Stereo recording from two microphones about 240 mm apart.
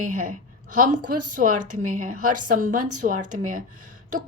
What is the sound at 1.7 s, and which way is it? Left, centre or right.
A woman's voice, right.